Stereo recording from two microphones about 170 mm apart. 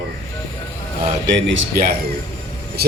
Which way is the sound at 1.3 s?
90° right.